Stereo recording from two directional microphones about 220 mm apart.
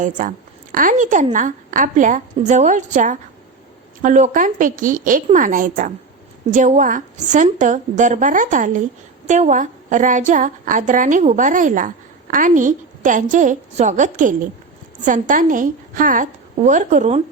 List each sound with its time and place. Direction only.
0.0 s a woman's voice: 35° right (ahead or behind)